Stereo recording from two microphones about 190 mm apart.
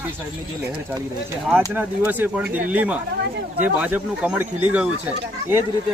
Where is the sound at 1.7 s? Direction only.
10° right (ahead or behind).